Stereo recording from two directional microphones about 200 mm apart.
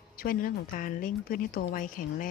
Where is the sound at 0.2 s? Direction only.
45° left (ahead or behind).